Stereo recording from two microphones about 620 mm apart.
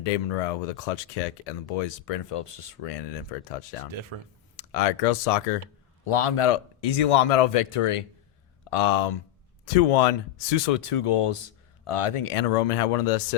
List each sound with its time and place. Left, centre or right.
0.0 s speech: left
4.1 s speech: right
4.5 s speech: left
6.1 s speech: left